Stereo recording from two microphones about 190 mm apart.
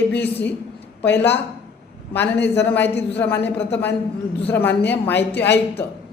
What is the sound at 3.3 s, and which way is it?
Speech, 65° left (ahead or behind).